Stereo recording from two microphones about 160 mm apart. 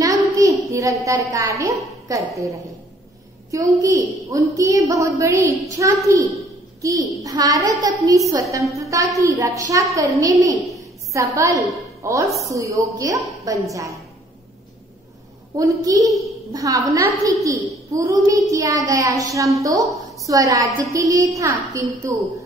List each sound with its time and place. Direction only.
0.0 s a sound: 20° right (ahead or behind)
0.7 s a woman's voice: 20° right (ahead or behind)
15.5 s a woman's voice: 20° right (ahead or behind)